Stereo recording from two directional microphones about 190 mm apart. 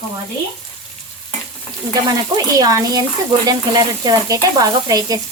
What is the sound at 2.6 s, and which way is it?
Speech, 20° right (ahead or behind).